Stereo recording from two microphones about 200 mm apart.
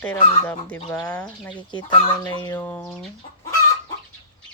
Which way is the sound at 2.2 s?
20° left (ahead or behind).